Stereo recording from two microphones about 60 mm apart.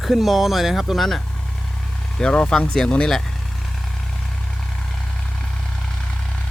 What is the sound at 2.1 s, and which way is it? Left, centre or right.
Speech, centre.